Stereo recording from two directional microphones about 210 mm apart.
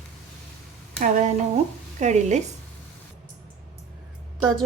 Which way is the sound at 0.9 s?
40° right (ahead or behind).